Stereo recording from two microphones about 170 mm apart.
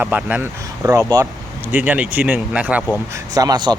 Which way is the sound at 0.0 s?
10° right (ahead or behind).